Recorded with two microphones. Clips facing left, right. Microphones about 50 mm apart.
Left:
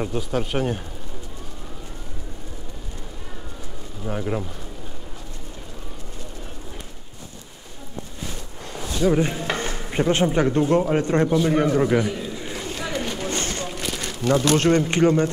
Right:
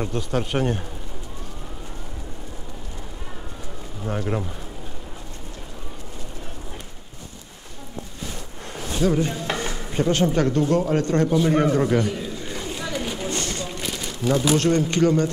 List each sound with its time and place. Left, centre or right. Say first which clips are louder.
0.0 s a man's voice: even; centre
4.2 s a man's voice: even; centre
9.1 s speech: left 2 dB; left
11.3 s a man's voice: right 1 dB; centre
12.2 s a sound: even; centre
13.3 s a sound: left 1 dB; left
13.7 s crumpling: left 1 dB; centre
14.8 s speech: left 1 dB; left